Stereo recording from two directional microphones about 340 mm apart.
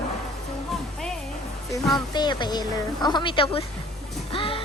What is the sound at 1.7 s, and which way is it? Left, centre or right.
Speech, centre.